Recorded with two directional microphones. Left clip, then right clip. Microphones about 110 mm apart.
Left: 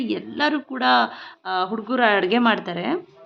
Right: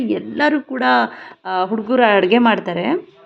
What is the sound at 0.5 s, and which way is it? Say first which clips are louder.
A woman's voice: right 3 dB; 30° right (ahead or behind).